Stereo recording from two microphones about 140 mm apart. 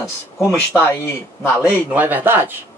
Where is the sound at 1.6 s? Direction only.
10° right (ahead or behind).